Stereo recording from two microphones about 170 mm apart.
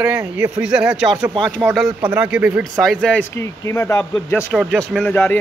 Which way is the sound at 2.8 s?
5° left (ahead or behind).